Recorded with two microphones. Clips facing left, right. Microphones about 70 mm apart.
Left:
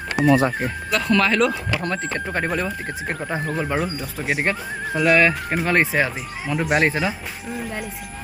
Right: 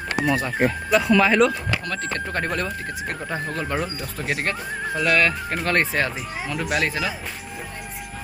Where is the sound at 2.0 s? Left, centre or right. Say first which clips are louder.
Left 1 dB; centre.